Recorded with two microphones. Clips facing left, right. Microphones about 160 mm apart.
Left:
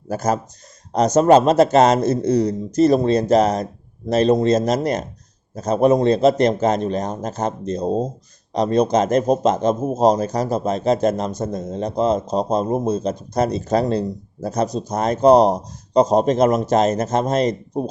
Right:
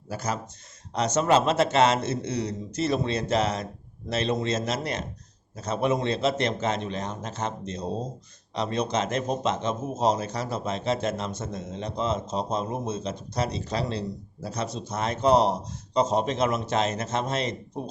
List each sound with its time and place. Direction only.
0.1 s a man's voice: 45° left (ahead or behind)